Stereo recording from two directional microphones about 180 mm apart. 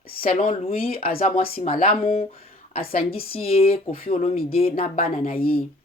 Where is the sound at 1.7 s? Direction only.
30° left (ahead or behind).